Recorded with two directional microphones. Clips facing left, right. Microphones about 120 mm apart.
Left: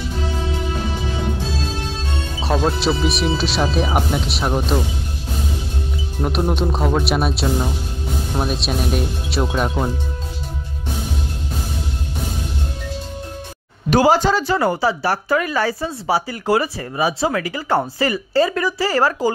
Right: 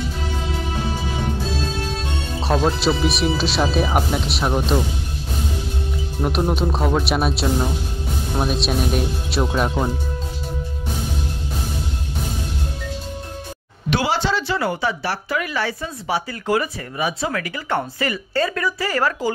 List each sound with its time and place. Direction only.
2.4 s speech: centre (ahead or behind)
6.2 s speech: centre (ahead or behind)
13.8 s a woman's voice: 40° left (ahead or behind)